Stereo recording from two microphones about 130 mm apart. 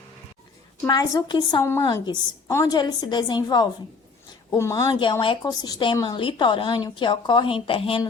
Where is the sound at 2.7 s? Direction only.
35° left (ahead or behind).